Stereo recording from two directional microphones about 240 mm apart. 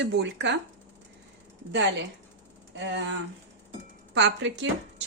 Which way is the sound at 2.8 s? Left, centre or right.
Right.